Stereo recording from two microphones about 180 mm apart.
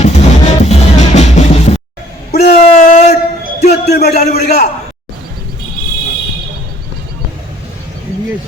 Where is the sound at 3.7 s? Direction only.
65° left (ahead or behind).